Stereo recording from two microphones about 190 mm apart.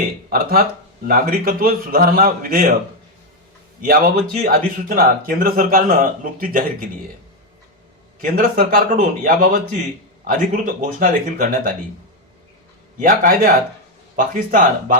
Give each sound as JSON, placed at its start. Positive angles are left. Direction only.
{"t": 0.3, "sound": "speech", "side_deg": -50}
{"t": 3.8, "sound": "speech", "side_deg": -50}
{"t": 8.2, "sound": "speech", "side_deg": -50}
{"t": 13.0, "sound": "speech", "side_deg": -45}